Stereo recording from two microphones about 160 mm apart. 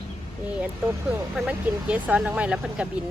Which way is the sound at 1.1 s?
5° right (ahead or behind).